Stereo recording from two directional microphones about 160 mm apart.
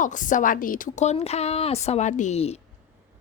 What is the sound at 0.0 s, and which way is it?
Speech, 55° left (ahead or behind).